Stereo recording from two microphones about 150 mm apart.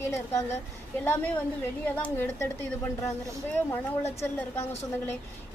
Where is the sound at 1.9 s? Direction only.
10° left (ahead or behind).